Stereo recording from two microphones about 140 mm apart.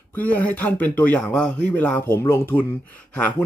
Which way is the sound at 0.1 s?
10° left (ahead or behind).